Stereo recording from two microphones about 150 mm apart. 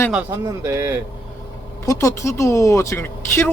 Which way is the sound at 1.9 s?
20° left (ahead or behind).